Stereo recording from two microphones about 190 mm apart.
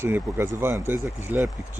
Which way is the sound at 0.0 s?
10° right (ahead or behind).